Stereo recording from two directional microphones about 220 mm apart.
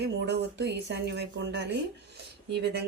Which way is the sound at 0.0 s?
50° right (ahead or behind).